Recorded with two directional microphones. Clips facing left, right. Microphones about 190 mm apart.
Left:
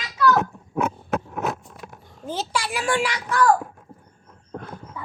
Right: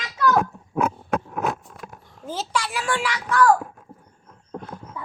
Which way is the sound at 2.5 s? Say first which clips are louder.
Left 2 dB; 10° left (ahead or behind).